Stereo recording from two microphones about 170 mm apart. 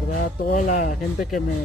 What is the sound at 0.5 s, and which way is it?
Speech, 50° left (ahead or behind).